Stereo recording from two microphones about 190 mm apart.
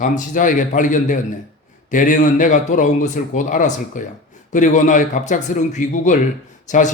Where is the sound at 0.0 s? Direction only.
45° left (ahead or behind).